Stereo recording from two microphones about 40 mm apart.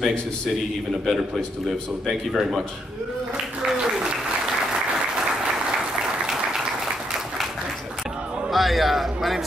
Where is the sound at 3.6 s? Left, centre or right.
Centre.